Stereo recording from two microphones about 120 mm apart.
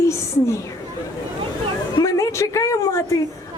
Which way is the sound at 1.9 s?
25° left (ahead or behind).